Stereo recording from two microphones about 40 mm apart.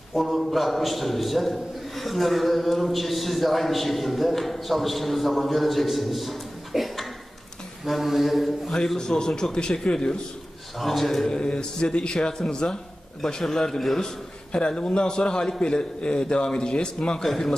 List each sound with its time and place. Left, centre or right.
0.1 s a man's voice: centre
8.7 s a man's voice: centre
10.8 s a man's voice: centre
11.2 s a man's voice: left
14.5 s a man's voice: left
17.2 s a man's voice: centre